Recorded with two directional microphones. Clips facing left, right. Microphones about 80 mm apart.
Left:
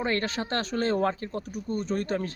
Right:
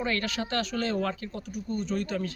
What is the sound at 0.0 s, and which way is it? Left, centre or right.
Speech, left.